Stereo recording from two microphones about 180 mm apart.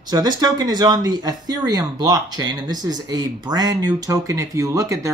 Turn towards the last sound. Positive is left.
turn(degrees=-20)  # may be behind; listen again after turning